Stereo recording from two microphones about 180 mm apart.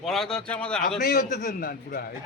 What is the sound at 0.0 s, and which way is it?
Speech, centre (ahead or behind).